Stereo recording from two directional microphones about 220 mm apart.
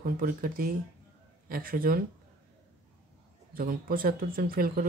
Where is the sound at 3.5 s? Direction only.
40° right (ahead or behind).